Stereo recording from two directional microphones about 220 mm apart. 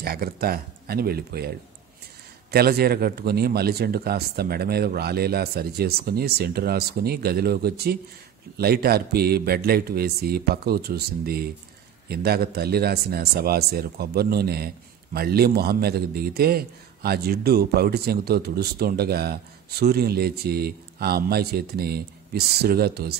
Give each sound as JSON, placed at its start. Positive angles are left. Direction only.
{"t": 0.0, "sound": "a man's voice", "side_deg": -45}
{"t": 2.5, "sound": "a man's voice", "side_deg": -45}